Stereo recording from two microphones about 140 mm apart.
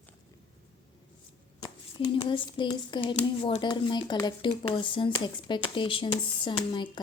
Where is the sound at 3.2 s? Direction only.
50° left (ahead or behind).